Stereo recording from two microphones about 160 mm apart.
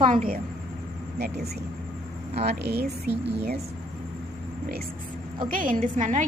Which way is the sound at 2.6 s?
90° right.